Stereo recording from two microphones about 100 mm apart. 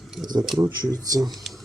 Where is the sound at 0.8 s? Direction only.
40° right (ahead or behind).